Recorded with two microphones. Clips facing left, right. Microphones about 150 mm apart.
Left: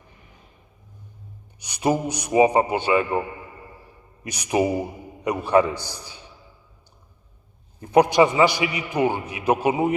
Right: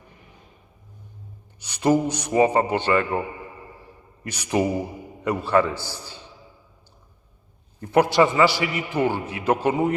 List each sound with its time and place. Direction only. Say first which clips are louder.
1.5 s a man's voice: right 3 dB; 15° left (ahead or behind)
4.2 s a man's voice: left 1 dB; 15° left (ahead or behind)
7.8 s a man's voice: left 2 dB; 15° left (ahead or behind)